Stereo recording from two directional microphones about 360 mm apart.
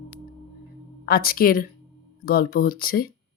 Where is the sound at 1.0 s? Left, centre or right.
Left.